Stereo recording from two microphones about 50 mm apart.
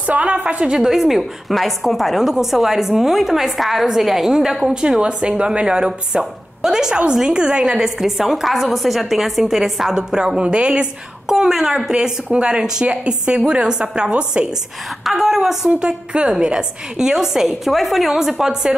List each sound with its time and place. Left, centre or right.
0.0 s a woman's voice: right
0.7 s a woman's voice: centre; by 10.9 s right
11.2 s a woman's voice: centre
15.0 s a woman's voice: centre